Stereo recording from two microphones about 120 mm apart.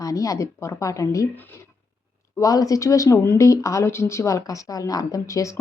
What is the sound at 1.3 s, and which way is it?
Speech, 15° left (ahead or behind).